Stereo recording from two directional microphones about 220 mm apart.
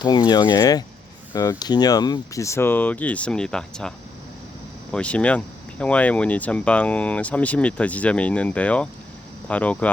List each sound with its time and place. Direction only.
0.0 s speech: 20° left (ahead or behind)